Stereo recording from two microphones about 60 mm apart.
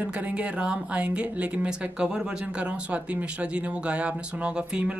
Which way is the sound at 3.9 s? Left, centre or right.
Centre.